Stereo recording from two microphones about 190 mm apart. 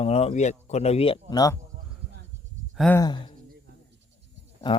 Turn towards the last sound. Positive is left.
turn(degrees=25)  # may be behind; listen again after turning